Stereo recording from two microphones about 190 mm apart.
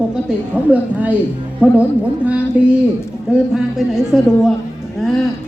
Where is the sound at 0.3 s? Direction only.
5° right (ahead or behind).